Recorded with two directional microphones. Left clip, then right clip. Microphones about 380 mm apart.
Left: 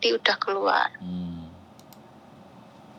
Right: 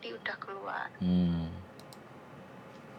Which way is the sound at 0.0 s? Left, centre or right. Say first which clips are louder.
Left 16 dB; left.